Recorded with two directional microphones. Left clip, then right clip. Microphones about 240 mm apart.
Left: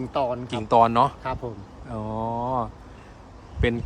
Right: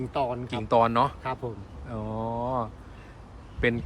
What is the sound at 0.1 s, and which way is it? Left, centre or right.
Speech, centre.